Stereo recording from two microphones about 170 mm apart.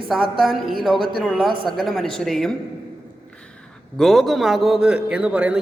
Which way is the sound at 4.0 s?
Centre (ahead or behind).